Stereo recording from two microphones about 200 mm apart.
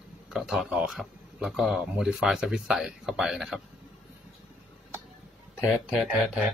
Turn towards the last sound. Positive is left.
turn(degrees=-5)  # may be behind; listen again after turning